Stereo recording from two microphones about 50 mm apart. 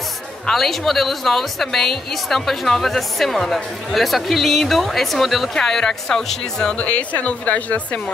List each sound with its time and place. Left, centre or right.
0.5 s a woman's voice: centre
6.8 s speech: left